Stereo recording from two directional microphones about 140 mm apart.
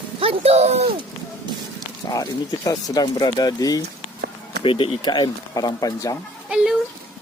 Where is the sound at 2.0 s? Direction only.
25° left (ahead or behind).